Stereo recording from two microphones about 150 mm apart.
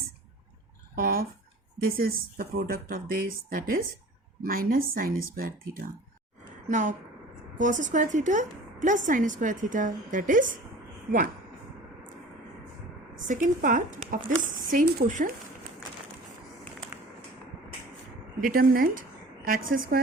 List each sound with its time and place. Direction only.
0.9 s a sound: 75° right (ahead or behind)
1.8 s speech: 75° right (ahead or behind)
6.7 s a woman's voice: 55° right (ahead or behind)
13.2 s a woman's voice: 60° right (ahead or behind)
18.3 s speech: 70° right (ahead or behind)